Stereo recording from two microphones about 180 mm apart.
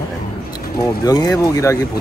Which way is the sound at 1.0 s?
20° left (ahead or behind).